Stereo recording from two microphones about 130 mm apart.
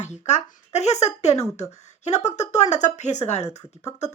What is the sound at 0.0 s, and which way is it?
Speech, 60° left (ahead or behind).